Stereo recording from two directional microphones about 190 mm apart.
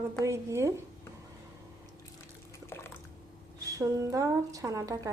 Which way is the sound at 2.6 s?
15° left (ahead or behind).